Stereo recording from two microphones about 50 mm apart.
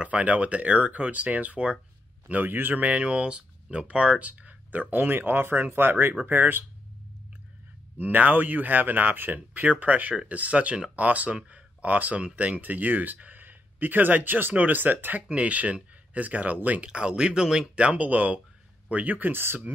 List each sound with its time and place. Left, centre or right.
0.0 s speech: right
8.0 s speech: right
15.2 s speech: right
16.9 s speech: centre
17.8 s speech: right